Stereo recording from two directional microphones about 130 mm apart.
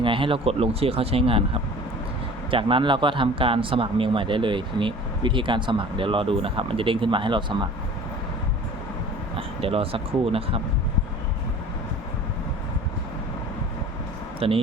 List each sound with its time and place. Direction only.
0.0 s speech: 40° right (ahead or behind)
2.5 s a man's voice: 40° right (ahead or behind)
9.6 s speech: 45° right (ahead or behind)
14.3 s speech: 45° right (ahead or behind)